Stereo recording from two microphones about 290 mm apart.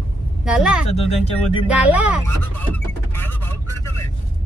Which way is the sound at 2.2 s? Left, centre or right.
Centre.